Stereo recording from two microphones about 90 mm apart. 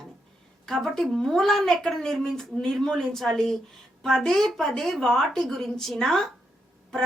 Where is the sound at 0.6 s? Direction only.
5° left (ahead or behind).